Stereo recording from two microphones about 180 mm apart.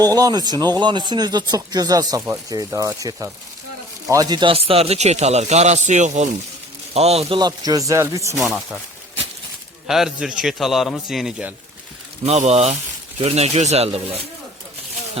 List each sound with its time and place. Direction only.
0.0 s a man's voice: 20° right (ahead or behind)
7.3 s speech: 20° right (ahead or behind)
9.8 s a man's voice: centre (ahead or behind)
12.2 s a man's voice: 35° right (ahead or behind)